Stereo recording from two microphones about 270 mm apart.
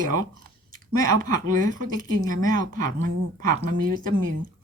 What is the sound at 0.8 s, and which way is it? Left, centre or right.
Speech, right.